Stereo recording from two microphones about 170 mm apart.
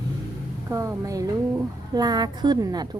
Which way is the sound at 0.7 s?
15° right (ahead or behind).